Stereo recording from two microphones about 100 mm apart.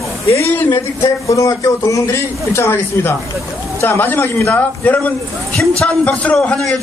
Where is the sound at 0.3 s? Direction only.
30° left (ahead or behind).